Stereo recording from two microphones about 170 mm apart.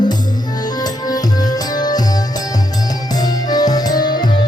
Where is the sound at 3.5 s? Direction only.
25° left (ahead or behind).